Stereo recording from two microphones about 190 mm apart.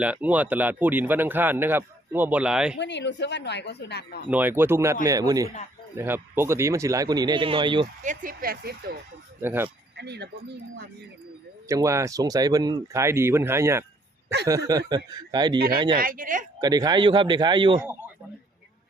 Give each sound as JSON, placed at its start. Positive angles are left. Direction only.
{"t": 0.0, "sound": "speech", "side_deg": -10}
{"t": 2.7, "sound": "speech", "side_deg": 65}
{"t": 4.3, "sound": "speech", "side_deg": -10}
{"t": 8.0, "sound": "speech", "side_deg": -45}
{"t": 9.4, "sound": "speech", "side_deg": -10}
{"t": 10.0, "sound": "speech", "side_deg": -60}
{"t": 11.7, "sound": "speech", "side_deg": -15}
{"t": 16.0, "sound": "speech", "side_deg": -45}
{"t": 16.6, "sound": "speech", "side_deg": -20}